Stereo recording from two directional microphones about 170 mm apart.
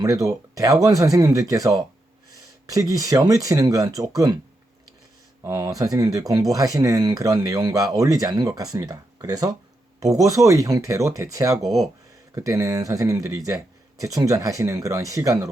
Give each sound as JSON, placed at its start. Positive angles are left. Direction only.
{"t": 0.0, "sound": "speech", "side_deg": -20}
{"t": 5.4, "sound": "speech", "side_deg": -20}